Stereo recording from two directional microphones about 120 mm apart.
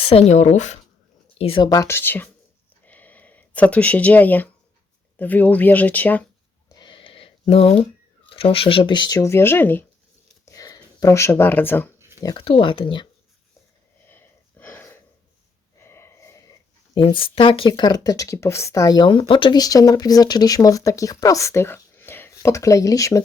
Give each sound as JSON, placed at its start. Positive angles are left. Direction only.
{"t": 0.0, "sound": "speech", "side_deg": 55}
{"t": 1.4, "sound": "speech", "side_deg": 50}
{"t": 1.6, "sound": "speech", "side_deg": 30}
{"t": 2.8, "sound": "a sound", "side_deg": 15}
{"t": 5.1, "sound": "speech", "side_deg": 15}
{"t": 6.7, "sound": "a sound", "side_deg": 35}
{"t": 8.3, "sound": "speech", "side_deg": 50}
{"t": 10.4, "sound": "shuffling cards", "side_deg": 30}
{"t": 11.9, "sound": "a sound", "side_deg": -20}
{"t": 12.4, "sound": "speech", "side_deg": 50}
{"t": 14.1, "sound": "wheeze", "side_deg": 15}
{"t": 15.8, "sound": "a sound", "side_deg": 20}
{"t": 16.9, "sound": "speech", "side_deg": 45}